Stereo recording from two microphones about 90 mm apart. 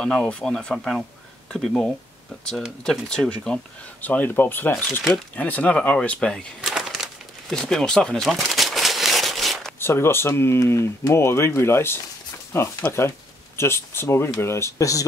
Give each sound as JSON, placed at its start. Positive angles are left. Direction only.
{"t": 0.0, "sound": "speech", "side_deg": 5}
{"t": 3.1, "sound": "speech", "side_deg": 10}
{"t": 4.0, "sound": "speech", "side_deg": 20}
{"t": 6.6, "sound": "crumpling", "side_deg": -5}
{"t": 9.8, "sound": "speech", "side_deg": 25}